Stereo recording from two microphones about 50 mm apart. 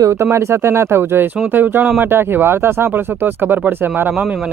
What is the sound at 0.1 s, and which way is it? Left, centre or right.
Speech, right.